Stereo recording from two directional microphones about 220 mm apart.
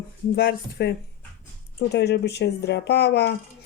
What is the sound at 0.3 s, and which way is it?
Speech, 45° left (ahead or behind).